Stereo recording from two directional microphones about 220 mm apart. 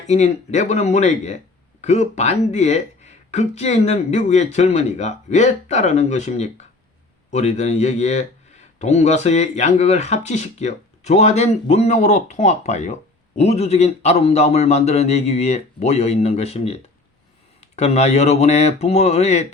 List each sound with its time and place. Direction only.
0.1 s speech: 30° left (ahead or behind)